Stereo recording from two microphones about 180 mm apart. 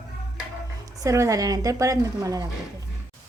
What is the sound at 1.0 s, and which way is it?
Speech, 15° right (ahead or behind).